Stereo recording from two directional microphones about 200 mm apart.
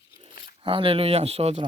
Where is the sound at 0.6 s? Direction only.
25° right (ahead or behind).